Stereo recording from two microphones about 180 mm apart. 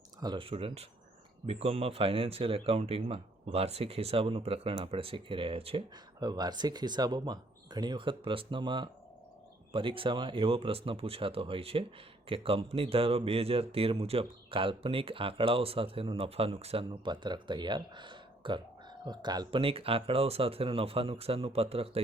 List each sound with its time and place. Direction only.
0.2 s speech: 25° right (ahead or behind)